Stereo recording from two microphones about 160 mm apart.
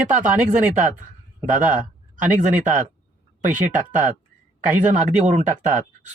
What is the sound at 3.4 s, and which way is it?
Speech, 50° right (ahead or behind).